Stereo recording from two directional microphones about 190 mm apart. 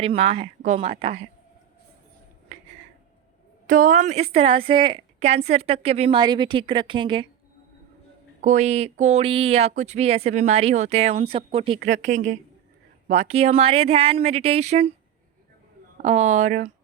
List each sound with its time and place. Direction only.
0.0 s speech: 30° right (ahead or behind)
3.7 s a woman's voice: 45° right (ahead or behind); by 7.3 s 25° right (ahead or behind)
8.4 s speech: 40° right (ahead or behind)
11.9 s speech: 40° right (ahead or behind)
16.0 s speech: 35° right (ahead or behind)